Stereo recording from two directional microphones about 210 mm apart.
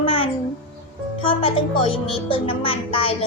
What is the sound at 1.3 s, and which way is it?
A woman's voice, 25° left (ahead or behind).